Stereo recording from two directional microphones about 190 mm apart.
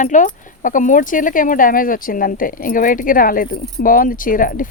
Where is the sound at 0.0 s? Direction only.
40° left (ahead or behind).